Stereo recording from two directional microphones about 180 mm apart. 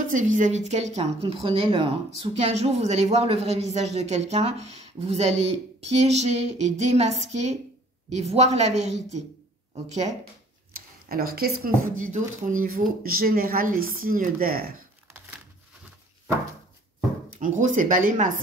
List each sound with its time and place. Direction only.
0.0 s a woman's voice: 45° right (ahead or behind)
11.1 s speech: 55° right (ahead or behind)
17.4 s speech: 45° right (ahead or behind)